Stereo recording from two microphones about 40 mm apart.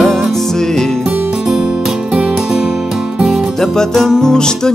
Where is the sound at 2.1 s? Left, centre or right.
Centre.